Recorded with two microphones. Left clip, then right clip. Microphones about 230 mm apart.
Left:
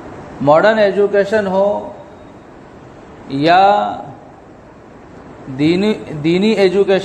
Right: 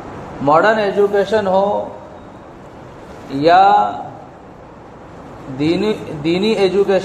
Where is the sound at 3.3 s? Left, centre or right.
Left.